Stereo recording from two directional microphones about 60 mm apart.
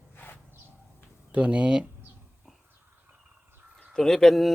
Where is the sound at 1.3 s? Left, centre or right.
Right.